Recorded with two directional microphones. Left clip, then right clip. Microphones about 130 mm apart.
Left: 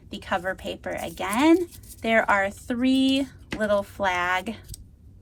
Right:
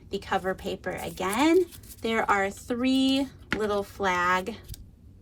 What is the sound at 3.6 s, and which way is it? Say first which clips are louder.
Speech: left 5 dB; 55° right (ahead or behind).